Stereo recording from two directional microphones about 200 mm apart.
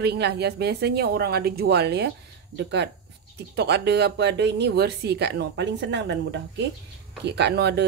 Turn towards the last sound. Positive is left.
turn(degrees=-55)  # may be behind; listen again after turning